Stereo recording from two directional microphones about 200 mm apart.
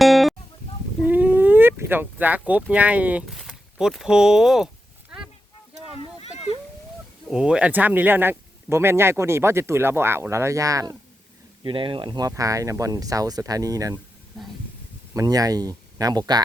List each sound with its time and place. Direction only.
0.0 s guitar: centre (ahead or behind)
1.0 s speech: 10° right (ahead or behind)
6.0 s a sound: 30° left (ahead or behind)
7.3 s speech: 5° right (ahead or behind)
15.1 s speech: 15° right (ahead or behind)